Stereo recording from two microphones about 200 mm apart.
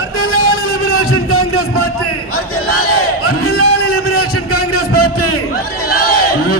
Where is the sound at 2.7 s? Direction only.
90° left.